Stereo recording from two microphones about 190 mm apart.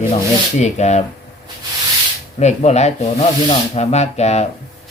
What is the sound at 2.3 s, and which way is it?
Speech, 35° left (ahead or behind).